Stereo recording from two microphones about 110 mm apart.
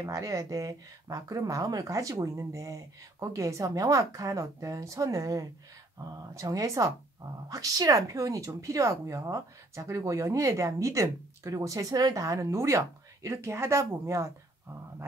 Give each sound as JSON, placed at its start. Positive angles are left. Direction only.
{"t": 0.0, "sound": "speech", "side_deg": -30}